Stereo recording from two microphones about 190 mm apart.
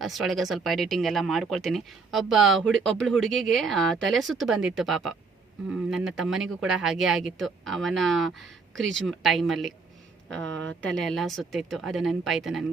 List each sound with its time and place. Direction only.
0.0 s speech: centre (ahead or behind)
8.4 s speech: 80° right
9.0 s speech: centre (ahead or behind)
10.4 s speech: 80° right
10.8 s speech: centre (ahead or behind)